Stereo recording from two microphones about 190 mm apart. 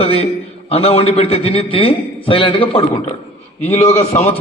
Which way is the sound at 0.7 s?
30° left (ahead or behind).